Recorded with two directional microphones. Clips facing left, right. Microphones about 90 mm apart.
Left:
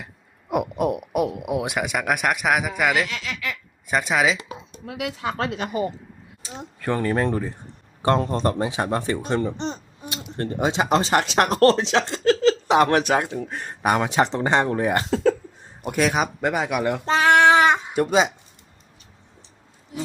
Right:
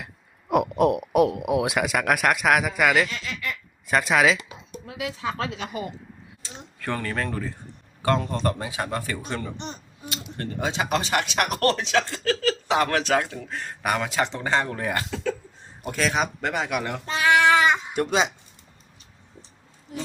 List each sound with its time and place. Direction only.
0.5 s a sound: 5° left (ahead or behind)
1.3 s speech: 15° right (ahead or behind)
1.5 s speech: centre (ahead or behind)
3.1 s speech: 90° left
3.8 s speech: 5° left (ahead or behind)
4.9 s a woman's voice: 75° left (ahead or behind); by 5.9 s 45° left (ahead or behind)
6.9 s speech: 25° left (ahead or behind)
8.2 s a man's voice: 35° left (ahead or behind)
15.1 s a sound: 40° left (ahead or behind)
15.8 s speech: 15° left (ahead or behind)
17.1 s a sound: 35° left (ahead or behind)
17.9 s speech: 5° left (ahead or behind)